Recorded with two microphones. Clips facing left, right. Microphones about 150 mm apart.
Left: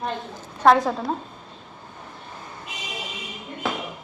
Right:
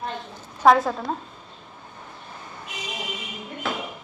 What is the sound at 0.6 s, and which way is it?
Speech, centre (ahead or behind).